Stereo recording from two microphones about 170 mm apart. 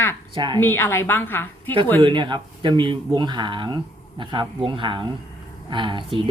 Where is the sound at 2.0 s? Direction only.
30° right (ahead or behind).